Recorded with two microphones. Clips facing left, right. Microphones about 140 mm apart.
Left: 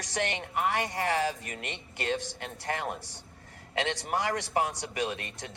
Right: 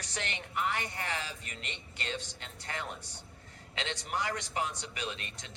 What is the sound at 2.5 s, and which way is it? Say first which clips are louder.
Speech: left 7 dB; 55° left (ahead or behind).